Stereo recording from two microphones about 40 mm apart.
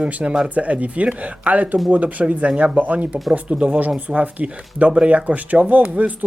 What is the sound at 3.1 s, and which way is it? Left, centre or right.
Speech, right.